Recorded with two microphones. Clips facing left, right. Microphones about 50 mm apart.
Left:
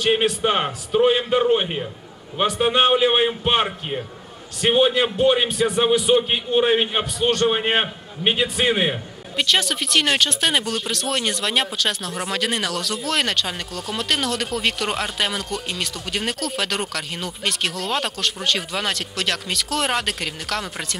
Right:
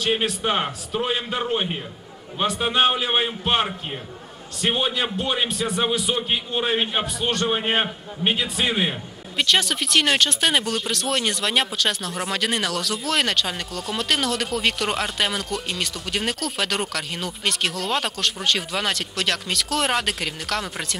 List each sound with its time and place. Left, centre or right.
0.0 s a man's voice: centre
2.6 s a man's voice: centre
4.6 s a man's voice: centre
7.0 s speech: centre
7.4 s a man's voice: centre
8.2 s a man's voice: left
9.4 s speech: centre